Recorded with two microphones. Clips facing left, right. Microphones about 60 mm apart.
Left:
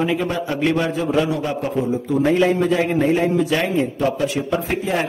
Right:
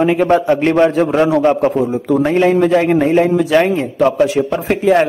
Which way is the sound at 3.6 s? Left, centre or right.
Right.